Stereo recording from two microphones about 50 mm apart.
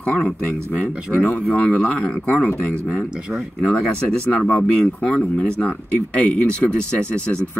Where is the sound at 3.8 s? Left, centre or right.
Left.